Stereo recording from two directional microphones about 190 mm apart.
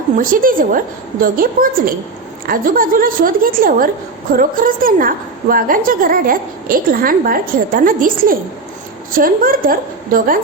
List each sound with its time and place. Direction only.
0.2 s a woman's voice: 45° right (ahead or behind)